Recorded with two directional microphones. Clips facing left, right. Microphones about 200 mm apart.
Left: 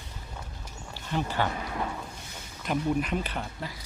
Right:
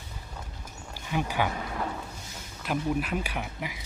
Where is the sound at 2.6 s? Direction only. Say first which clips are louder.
Left 1 dB; 5° right (ahead or behind).